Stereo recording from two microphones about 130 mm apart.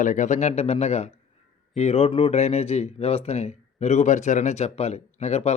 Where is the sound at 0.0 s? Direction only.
80° left.